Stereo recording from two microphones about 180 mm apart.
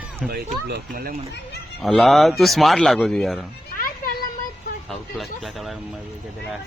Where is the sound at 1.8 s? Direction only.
Centre (ahead or behind).